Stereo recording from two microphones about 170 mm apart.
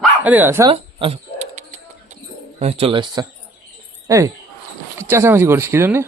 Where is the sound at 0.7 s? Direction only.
30° right (ahead or behind).